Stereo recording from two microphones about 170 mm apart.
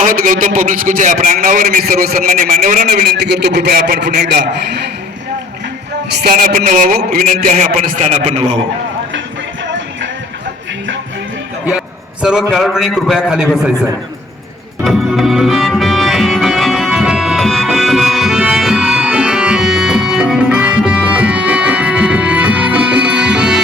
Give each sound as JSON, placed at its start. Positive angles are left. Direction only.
{"t": 0.0, "sound": "a man's voice", "side_deg": -55}
{"t": 6.1, "sound": "a man's voice", "side_deg": -60}
{"t": 12.2, "sound": "a man's voice", "side_deg": -5}
{"t": 14.8, "sound": "music", "side_deg": 0}